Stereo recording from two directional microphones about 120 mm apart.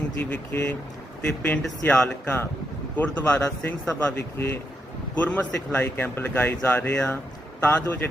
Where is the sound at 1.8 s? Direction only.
15° left (ahead or behind).